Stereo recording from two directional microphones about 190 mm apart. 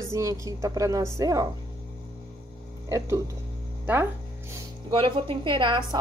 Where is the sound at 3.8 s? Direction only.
10° right (ahead or behind).